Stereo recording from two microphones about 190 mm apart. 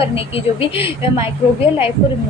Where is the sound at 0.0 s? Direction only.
30° left (ahead or behind).